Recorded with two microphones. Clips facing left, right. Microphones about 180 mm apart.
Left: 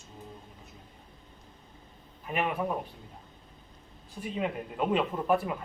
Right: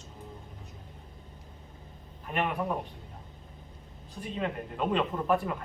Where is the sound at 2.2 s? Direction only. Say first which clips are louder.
Even; 5° left (ahead or behind).